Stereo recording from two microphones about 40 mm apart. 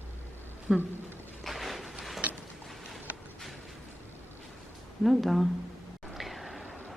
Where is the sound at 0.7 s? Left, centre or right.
Right.